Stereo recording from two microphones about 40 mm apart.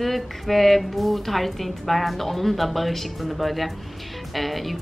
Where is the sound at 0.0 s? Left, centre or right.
Centre.